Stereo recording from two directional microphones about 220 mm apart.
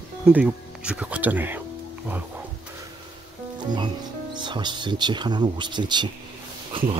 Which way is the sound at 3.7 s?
20° right (ahead or behind).